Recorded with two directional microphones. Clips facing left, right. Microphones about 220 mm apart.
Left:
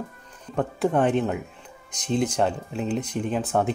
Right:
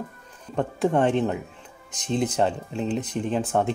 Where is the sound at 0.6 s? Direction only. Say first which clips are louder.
Even; centre (ahead or behind).